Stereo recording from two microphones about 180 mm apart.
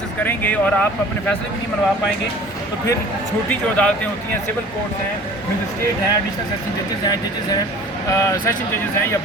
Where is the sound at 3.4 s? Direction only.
5° left (ahead or behind).